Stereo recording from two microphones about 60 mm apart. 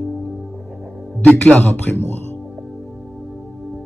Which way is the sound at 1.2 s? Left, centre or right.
Centre.